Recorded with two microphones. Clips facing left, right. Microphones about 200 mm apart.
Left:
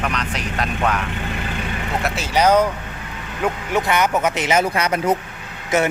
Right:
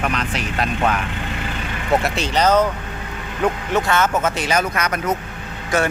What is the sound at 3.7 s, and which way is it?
Speech, 15° left (ahead or behind).